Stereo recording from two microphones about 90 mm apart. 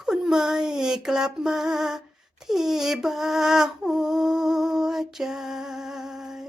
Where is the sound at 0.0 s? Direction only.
5° right (ahead or behind).